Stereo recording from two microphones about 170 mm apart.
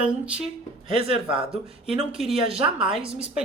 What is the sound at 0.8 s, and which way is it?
Speech, 30° right (ahead or behind).